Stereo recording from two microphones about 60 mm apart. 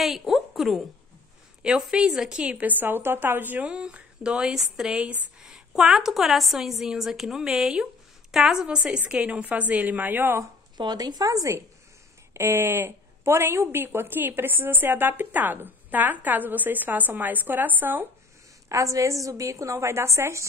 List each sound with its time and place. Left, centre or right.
0.0 s a sound: centre
1.6 s a woman's voice: centre
2.5 s a woman's voice: right
3.6 s speech: centre
4.9 s a woman's voice: right
5.4 s a woman's voice: centre; by 10.4 s right
11.0 s a woman's voice: right
12.4 s a woman's voice: right
18.7 s a woman's voice: right